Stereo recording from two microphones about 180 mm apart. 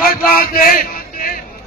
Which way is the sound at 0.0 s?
55° left (ahead or behind).